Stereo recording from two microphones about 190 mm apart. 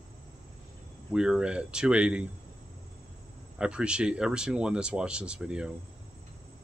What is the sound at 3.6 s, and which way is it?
Speech, 5° right (ahead or behind).